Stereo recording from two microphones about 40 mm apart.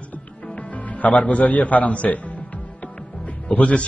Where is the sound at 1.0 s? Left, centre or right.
Left.